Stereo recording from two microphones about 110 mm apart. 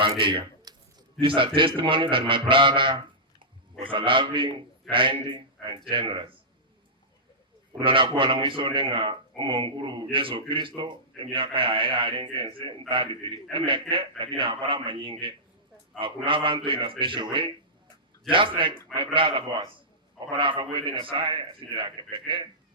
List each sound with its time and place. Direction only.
0.2 s a man's voice: 50° right (ahead or behind)
7.7 s speech: 50° right (ahead or behind)